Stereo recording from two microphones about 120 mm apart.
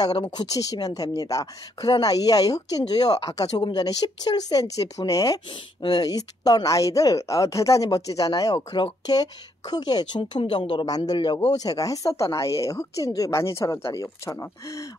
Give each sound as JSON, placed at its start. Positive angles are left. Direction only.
{"t": 0.4, "sound": "speech", "side_deg": 30}
{"t": 10.4, "sound": "speech", "side_deg": 45}
{"t": 11.6, "sound": "speech", "side_deg": 30}